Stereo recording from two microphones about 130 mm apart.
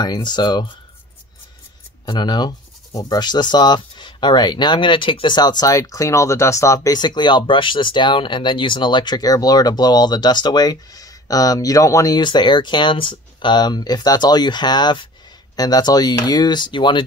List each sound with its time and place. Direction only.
0.0 s speech: 35° left (ahead or behind)
2.0 s speech: 35° left (ahead or behind)